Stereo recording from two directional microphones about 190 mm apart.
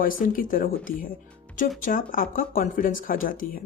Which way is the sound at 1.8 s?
45° left (ahead or behind).